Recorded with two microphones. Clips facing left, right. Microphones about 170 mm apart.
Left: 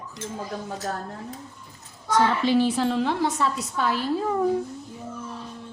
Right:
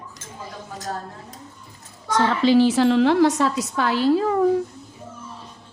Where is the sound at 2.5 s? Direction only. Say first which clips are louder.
Right 6 dB; 90° right.